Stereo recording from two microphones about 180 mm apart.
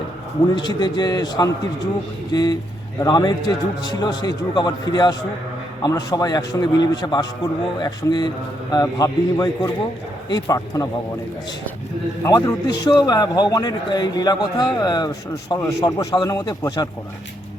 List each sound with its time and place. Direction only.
0.5 s a man's voice: 25° left (ahead or behind)
12.2 s a man's voice: 20° left (ahead or behind)